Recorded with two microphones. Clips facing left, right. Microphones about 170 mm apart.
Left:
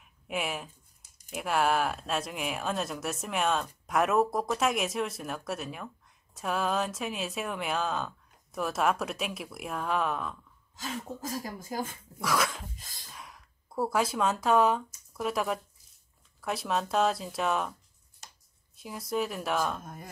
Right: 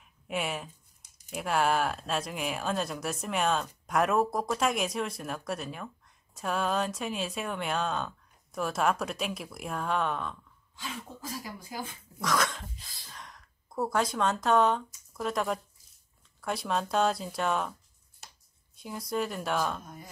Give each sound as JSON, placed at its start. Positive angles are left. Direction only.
{"t": 0.0, "sound": "a sound", "side_deg": 0}
{"t": 1.3, "sound": "speech", "side_deg": 0}
{"t": 10.8, "sound": "speech", "side_deg": 45}
{"t": 12.2, "sound": "speech", "side_deg": 5}
{"t": 12.7, "sound": "speech", "side_deg": 45}
{"t": 13.1, "sound": "speech", "side_deg": 5}
{"t": 18.8, "sound": "speech", "side_deg": 0}
{"t": 19.8, "sound": "speech", "side_deg": 50}